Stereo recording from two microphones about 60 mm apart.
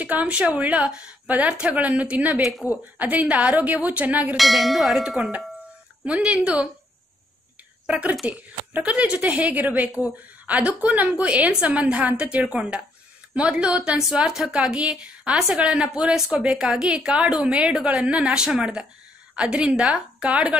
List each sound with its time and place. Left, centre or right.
0.0 s a woman's voice: right
4.4 s tubular bells: centre
6.0 s a woman's voice: right
7.8 s a woman's voice: right